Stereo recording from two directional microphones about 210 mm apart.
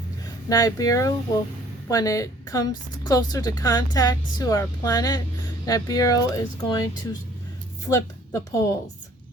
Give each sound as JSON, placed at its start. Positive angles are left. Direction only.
{"t": 0.4, "sound": "a woman's voice", "side_deg": 15}
{"t": 7.9, "sound": "a woman's voice", "side_deg": 15}